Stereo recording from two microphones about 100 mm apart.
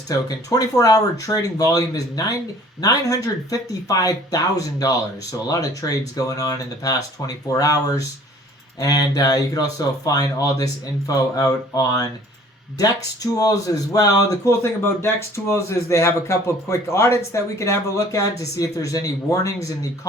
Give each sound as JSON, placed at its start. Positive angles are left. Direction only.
{"t": 0.1, "sound": "a man's voice", "side_deg": 35}
{"t": 13.3, "sound": "a man's voice", "side_deg": 35}